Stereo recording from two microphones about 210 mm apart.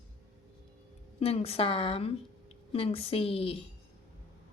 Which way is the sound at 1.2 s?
30° left (ahead or behind).